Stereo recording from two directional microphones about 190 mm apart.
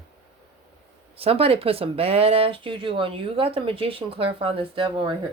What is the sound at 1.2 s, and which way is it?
Speech, 30° right (ahead or behind).